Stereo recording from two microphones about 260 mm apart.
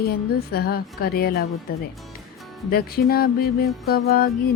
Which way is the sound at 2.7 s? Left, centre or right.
Left.